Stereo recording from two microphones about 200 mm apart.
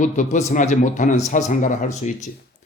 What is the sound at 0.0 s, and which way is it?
A man's voice, 35° left (ahead or behind).